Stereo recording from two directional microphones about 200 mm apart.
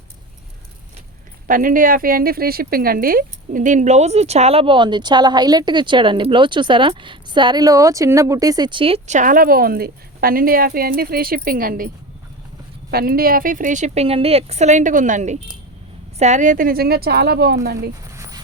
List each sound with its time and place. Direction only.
1.5 s speech: 45° right (ahead or behind)
12.9 s speech: 50° right (ahead or behind)
18.1 s a sound: 15° right (ahead or behind)